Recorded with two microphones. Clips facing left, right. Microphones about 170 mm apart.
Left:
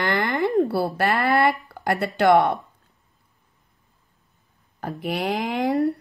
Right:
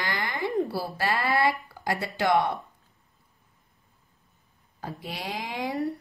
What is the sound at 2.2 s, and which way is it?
Speech, 65° left (ahead or behind).